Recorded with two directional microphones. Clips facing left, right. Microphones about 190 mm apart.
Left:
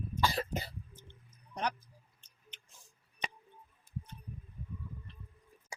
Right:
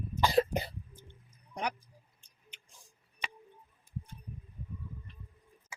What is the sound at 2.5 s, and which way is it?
Tick-tock, 10° right (ahead or behind).